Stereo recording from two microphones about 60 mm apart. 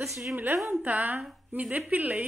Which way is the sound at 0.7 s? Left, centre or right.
Right.